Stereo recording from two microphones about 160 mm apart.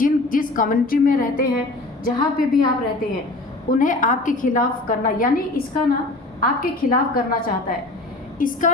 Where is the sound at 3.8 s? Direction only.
55° left (ahead or behind).